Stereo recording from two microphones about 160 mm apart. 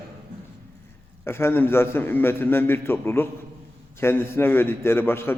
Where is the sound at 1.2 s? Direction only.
15° left (ahead or behind).